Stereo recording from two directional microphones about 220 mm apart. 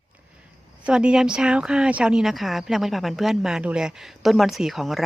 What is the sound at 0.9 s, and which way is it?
Speech, 5° right (ahead or behind).